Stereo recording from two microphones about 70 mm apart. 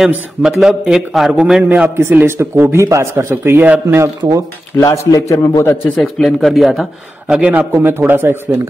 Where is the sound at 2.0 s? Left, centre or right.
Right.